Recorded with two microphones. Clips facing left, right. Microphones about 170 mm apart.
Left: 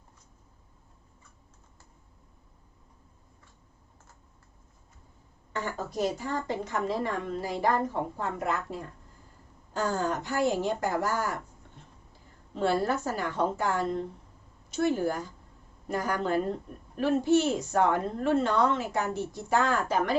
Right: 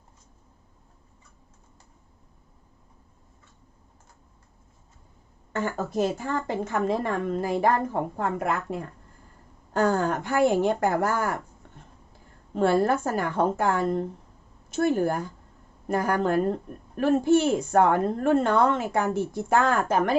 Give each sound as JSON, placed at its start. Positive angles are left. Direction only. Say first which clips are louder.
{"t": 5.5, "sound": "a woman's voice", "louder": "right 5 dB", "side_deg": -50}
{"t": 12.5, "sound": "a woman's voice", "louder": "right 5 dB", "side_deg": -50}